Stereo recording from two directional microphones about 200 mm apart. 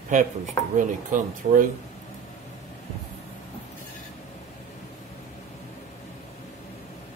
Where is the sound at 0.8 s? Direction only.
40° right (ahead or behind).